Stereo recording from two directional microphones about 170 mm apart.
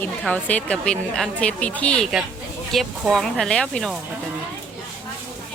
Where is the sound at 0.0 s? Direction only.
5° left (ahead or behind).